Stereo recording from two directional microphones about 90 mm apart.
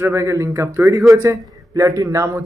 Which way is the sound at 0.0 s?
35° right (ahead or behind).